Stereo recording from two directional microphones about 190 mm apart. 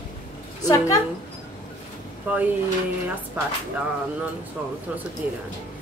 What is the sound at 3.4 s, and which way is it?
Music, 10° right (ahead or behind).